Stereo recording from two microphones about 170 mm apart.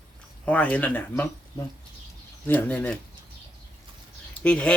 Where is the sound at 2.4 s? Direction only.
10° left (ahead or behind).